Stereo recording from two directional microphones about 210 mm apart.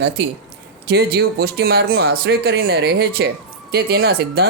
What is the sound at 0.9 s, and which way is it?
Speech, 50° right (ahead or behind).